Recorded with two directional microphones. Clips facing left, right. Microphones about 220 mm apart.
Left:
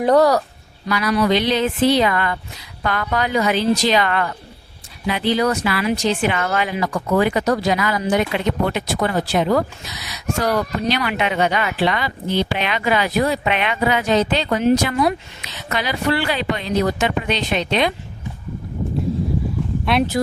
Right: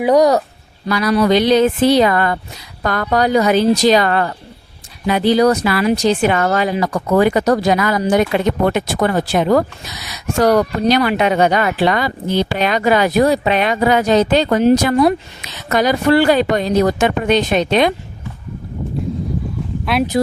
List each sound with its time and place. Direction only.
0.0 s speech: 10° right (ahead or behind)
0.9 s speech: 35° right (ahead or behind)
19.8 s speech: centre (ahead or behind)